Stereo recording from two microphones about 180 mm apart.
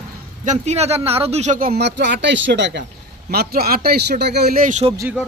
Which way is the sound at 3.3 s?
60° right (ahead or behind).